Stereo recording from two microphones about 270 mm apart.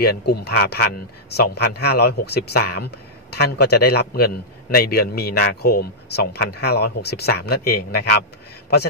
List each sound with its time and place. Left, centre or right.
0.0 s speech: left